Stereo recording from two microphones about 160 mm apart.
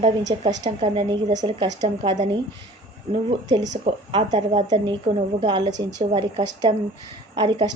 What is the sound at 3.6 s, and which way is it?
A woman's voice, 45° right (ahead or behind).